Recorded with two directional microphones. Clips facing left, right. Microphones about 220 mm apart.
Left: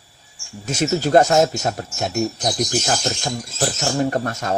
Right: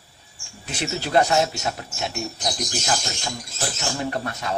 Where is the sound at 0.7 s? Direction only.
45° left (ahead or behind).